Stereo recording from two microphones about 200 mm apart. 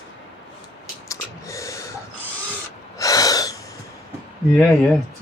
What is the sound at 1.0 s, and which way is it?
Gasp, 15° left (ahead or behind).